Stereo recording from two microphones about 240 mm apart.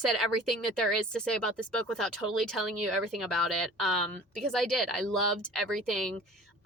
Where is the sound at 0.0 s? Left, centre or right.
Centre.